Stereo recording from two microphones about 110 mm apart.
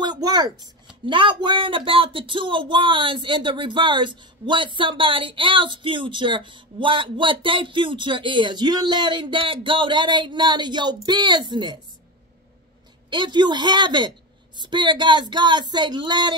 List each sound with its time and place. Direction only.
0.0 s speech: 40° right (ahead or behind)
1.0 s speech: 45° right (ahead or behind)
13.1 s speech: 45° right (ahead or behind)